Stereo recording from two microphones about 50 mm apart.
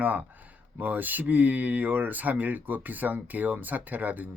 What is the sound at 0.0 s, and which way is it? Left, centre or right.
Speech, right.